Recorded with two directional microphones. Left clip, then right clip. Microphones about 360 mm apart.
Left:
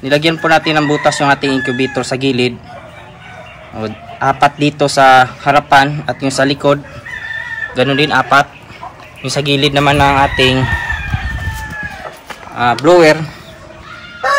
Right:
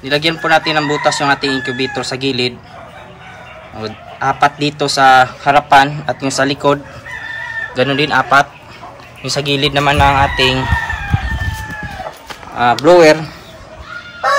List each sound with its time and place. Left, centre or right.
0.0 s a man's voice: centre
3.7 s a man's voice: centre
12.3 s a sound: centre
12.7 s speech: centre